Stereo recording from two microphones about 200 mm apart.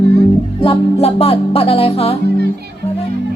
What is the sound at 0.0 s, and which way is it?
Music, 50° right (ahead or behind).